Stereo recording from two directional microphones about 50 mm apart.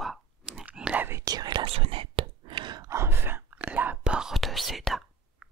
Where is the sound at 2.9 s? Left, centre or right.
Right.